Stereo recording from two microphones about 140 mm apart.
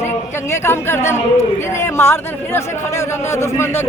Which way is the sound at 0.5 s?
20° left (ahead or behind).